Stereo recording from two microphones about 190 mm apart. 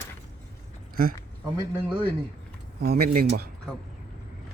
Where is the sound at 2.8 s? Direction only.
55° right (ahead or behind).